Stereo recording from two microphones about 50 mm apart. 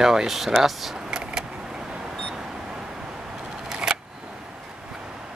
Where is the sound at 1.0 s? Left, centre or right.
Centre.